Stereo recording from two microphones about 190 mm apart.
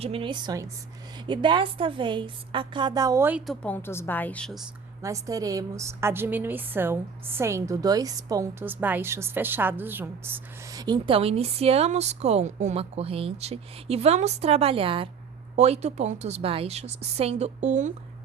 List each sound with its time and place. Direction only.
0.0 s a woman's voice: 30° right (ahead or behind); by 4.7 s centre (ahead or behind)
5.0 s a woman's voice: 15° right (ahead or behind); by 17.9 s 40° right (ahead or behind)